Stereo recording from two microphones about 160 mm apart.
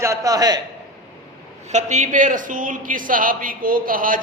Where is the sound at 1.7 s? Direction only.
45° right (ahead or behind).